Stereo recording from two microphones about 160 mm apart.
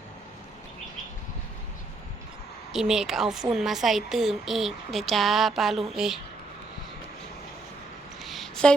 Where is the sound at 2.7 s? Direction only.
5° right (ahead or behind).